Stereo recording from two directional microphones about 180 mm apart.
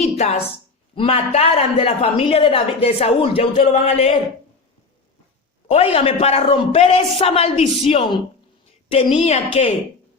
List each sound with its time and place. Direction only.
0.0 s a sound: 40° left (ahead or behind)
0.9 s a woman's voice: 35° left (ahead or behind)
5.6 s a woman's voice: 35° left (ahead or behind)